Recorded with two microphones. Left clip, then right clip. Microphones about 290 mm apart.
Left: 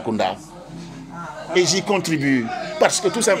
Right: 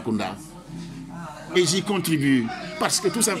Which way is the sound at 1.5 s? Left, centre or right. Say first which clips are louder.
Left 4 dB; right.